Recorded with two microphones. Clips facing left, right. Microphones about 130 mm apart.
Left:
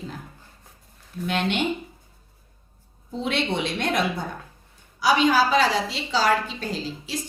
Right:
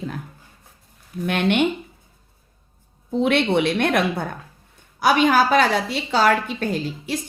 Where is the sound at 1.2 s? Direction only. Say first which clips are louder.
Right 5 dB; 60° right (ahead or behind).